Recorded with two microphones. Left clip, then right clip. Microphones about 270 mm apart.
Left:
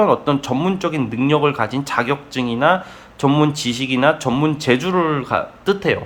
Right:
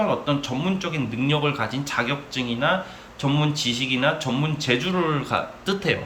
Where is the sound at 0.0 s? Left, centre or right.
Left.